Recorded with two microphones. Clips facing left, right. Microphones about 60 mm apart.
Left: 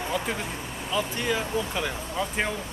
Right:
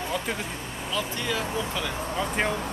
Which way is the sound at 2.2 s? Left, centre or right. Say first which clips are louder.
Right 1 dB; centre.